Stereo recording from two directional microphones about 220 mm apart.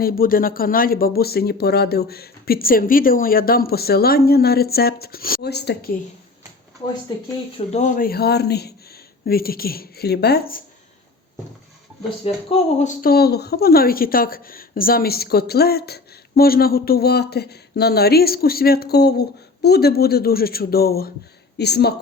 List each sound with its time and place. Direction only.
0.0 s a woman's voice: 40° left (ahead or behind)
7.7 s a woman's voice: 35° left (ahead or behind)
12.2 s speech: 25° left (ahead or behind)
13.0 s a woman's voice: 45° left (ahead or behind)